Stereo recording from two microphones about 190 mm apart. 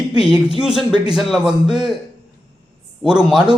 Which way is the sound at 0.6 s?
5° right (ahead or behind).